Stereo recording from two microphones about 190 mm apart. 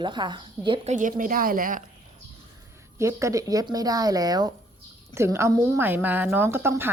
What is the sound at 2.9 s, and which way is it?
A woman's voice, 15° right (ahead or behind).